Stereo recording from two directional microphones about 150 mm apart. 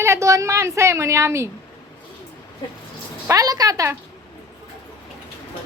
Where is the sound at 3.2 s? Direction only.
25° right (ahead or behind).